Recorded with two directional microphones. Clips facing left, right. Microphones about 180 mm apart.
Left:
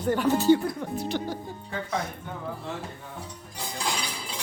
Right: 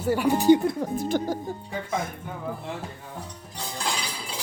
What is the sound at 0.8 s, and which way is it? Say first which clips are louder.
Speech: right 4 dB; 50° right (ahead or behind).